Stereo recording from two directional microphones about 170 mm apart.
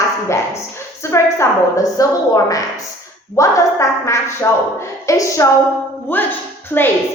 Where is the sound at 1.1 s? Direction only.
20° left (ahead or behind).